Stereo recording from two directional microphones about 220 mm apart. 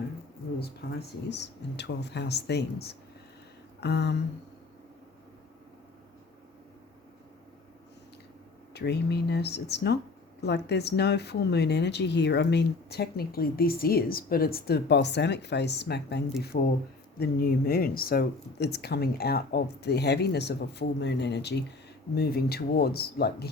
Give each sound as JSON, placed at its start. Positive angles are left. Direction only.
{"t": 0.6, "sound": "speech", "side_deg": 50}
{"t": 3.8, "sound": "a sound", "side_deg": 50}
{"t": 8.7, "sound": "speech", "side_deg": 50}